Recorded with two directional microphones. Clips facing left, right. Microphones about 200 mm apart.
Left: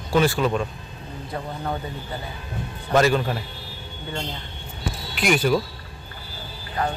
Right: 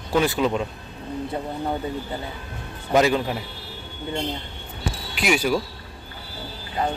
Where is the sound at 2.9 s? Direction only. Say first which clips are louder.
Even; 15° right (ahead or behind).